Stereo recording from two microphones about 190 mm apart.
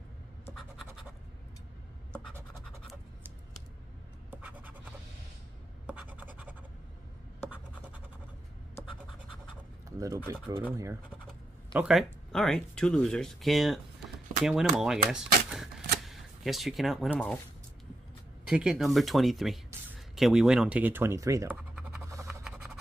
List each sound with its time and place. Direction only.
2.3 s scratch: 15° right (ahead or behind)
4.3 s scratch: 10° right (ahead or behind)
5.9 s scratch: 5° right (ahead or behind)
9.8 s a sound: 15° right (ahead or behind)
10.3 s speech: 10° right (ahead or behind)
11.7 s speech: centre (ahead or behind)
18.5 s speech: 5° right (ahead or behind)
22.1 s music: 15° right (ahead or behind)